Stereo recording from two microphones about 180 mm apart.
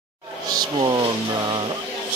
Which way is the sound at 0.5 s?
25° right (ahead or behind).